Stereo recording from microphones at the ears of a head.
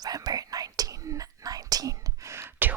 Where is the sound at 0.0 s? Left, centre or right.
Right.